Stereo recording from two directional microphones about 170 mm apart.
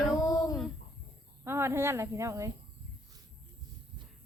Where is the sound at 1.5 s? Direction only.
15° right (ahead or behind).